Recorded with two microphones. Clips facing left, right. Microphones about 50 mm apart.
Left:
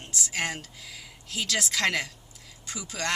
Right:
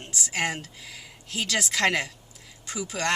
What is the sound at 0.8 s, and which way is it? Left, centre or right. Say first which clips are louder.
Speech: right 1 dB; right.